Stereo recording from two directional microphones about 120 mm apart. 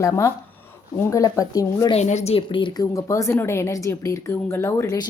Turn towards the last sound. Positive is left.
turn(degrees=25)  # may be behind; listen again after turning